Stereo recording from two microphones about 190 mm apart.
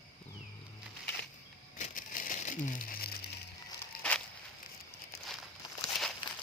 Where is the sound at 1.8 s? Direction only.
45° left (ahead or behind).